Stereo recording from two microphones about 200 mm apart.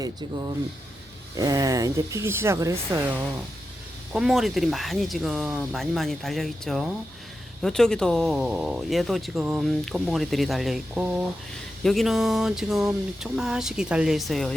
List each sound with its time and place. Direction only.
1.4 s speech: 15° right (ahead or behind)
4.1 s speech: 5° right (ahead or behind)